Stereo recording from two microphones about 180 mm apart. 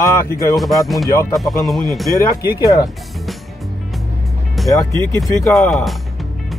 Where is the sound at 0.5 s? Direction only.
Centre (ahead or behind).